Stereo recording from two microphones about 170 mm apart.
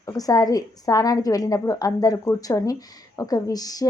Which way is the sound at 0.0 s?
20° left (ahead or behind).